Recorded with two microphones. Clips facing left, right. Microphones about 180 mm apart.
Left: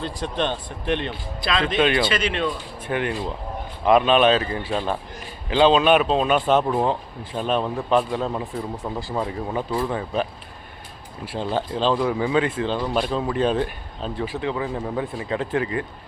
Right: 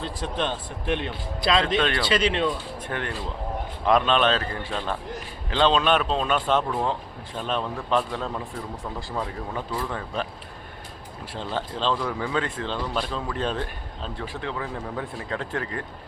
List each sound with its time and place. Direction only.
0.0 s a man's voice: 5° right (ahead or behind)
1.4 s speech: 35° right (ahead or behind)
1.6 s speech: 5° left (ahead or behind)
2.0 s speech: 30° right (ahead or behind)
2.8 s a man's voice: 10° left (ahead or behind)
11.3 s speech: 10° left (ahead or behind)